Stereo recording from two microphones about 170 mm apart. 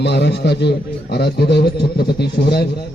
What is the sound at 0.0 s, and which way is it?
A man's voice, 80° left.